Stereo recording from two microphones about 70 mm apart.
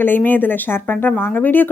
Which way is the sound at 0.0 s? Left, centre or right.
Left.